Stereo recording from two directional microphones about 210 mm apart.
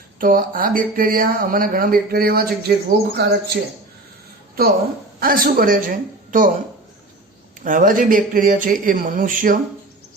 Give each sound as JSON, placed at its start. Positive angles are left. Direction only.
{"t": 0.2, "sound": "speech", "side_deg": -45}
{"t": 5.2, "sound": "a man's voice", "side_deg": -45}
{"t": 7.6, "sound": "a man's voice", "side_deg": -40}